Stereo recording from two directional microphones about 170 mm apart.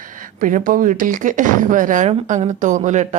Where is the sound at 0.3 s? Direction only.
55° right (ahead or behind).